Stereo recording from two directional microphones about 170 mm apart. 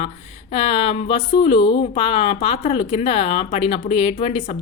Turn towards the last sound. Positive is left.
turn(degrees=35)  # may be behind; listen again after turning